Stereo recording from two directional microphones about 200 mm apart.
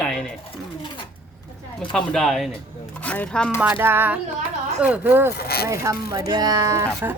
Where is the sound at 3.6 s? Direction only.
10° right (ahead or behind).